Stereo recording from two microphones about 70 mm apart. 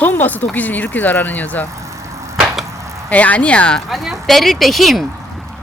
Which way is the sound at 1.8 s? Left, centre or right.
Right.